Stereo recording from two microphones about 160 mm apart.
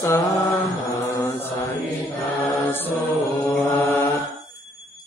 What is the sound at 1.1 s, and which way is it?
Mantra, 20° left (ahead or behind).